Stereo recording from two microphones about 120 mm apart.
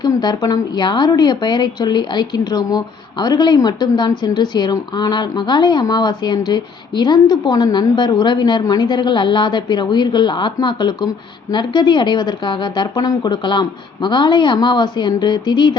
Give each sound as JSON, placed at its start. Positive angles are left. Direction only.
{"t": 0.0, "sound": "a woman's voice", "side_deg": 35}